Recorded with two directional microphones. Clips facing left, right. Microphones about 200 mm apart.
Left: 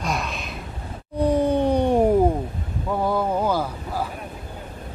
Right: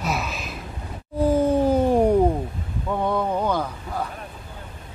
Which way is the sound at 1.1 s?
5° right (ahead or behind).